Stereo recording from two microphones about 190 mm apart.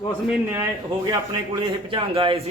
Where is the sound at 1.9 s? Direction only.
25° right (ahead or behind).